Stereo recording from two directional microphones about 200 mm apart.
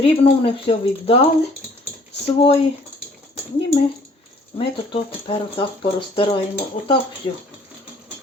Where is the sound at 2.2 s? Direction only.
30° left (ahead or behind).